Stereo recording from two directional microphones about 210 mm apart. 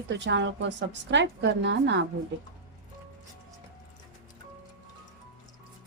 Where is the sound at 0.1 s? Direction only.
55° right (ahead or behind).